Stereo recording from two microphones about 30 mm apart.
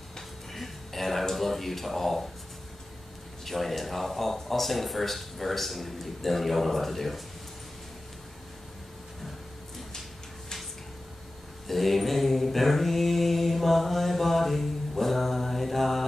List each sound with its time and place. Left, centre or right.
0.5 s music: centre
1.3 s speech: centre
3.4 s speech: centre
11.6 s mantra: centre